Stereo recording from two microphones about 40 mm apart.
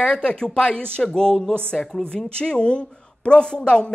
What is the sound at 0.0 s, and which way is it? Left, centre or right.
A woman's voice, left.